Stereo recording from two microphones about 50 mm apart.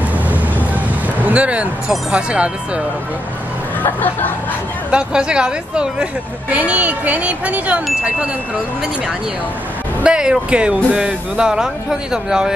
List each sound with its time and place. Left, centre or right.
0.3 s vehicle: right
1.2 s speech: right
3.8 s speech: left
4.9 s speech: centre
6.5 s speech: right
10.0 s speech: centre